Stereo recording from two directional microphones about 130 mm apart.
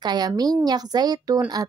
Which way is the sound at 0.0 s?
30° right (ahead or behind).